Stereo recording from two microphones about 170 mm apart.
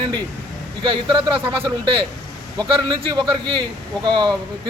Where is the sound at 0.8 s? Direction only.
30° right (ahead or behind).